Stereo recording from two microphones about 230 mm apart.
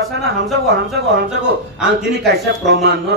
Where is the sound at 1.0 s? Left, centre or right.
Right.